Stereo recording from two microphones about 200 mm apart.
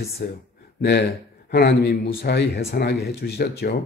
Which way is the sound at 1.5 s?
55° left (ahead or behind).